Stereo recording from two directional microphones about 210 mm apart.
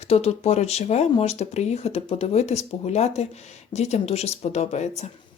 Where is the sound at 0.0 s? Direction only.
30° left (ahead or behind).